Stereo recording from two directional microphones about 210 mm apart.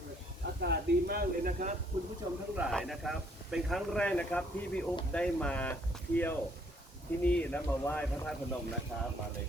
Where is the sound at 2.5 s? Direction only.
Centre (ahead or behind).